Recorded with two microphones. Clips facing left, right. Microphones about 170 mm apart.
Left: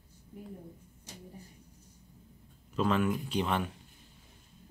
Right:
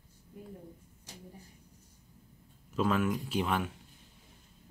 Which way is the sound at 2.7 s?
5° right (ahead or behind).